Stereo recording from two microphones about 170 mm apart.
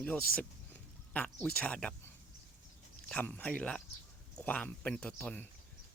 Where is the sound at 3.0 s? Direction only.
10° left (ahead or behind).